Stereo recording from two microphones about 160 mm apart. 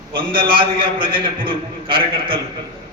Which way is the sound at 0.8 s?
30° right (ahead or behind).